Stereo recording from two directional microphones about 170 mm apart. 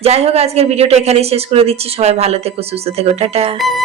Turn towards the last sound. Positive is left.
turn(degrees=-35)  # may be behind; listen again after turning